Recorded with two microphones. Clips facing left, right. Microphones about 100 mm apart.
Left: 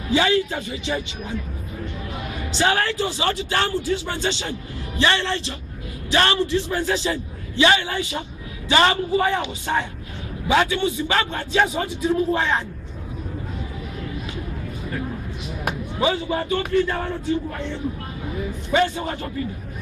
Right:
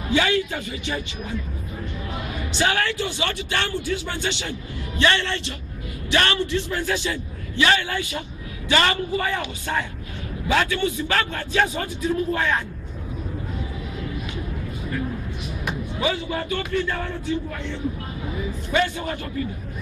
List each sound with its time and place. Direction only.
0.1 s a man's voice: 25° left (ahead or behind)
2.5 s a man's voice: 30° left (ahead or behind)
16.0 s a man's voice: 25° left (ahead or behind)
18.9 s a man's voice: 30° left (ahead or behind)